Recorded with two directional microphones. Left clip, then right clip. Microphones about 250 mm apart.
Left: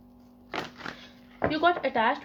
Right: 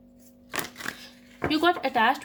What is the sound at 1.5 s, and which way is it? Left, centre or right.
Speech, right.